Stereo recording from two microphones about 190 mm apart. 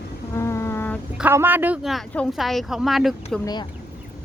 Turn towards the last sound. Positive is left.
turn(degrees=20)  # may be behind; listen again after turning